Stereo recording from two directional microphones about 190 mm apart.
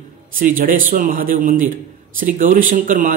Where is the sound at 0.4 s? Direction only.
45° right (ahead or behind).